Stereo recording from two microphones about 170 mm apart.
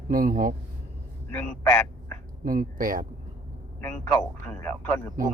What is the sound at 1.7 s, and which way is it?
Speech, 10° left (ahead or behind).